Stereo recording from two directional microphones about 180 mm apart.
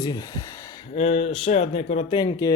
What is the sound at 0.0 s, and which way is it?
Speech, 20° left (ahead or behind).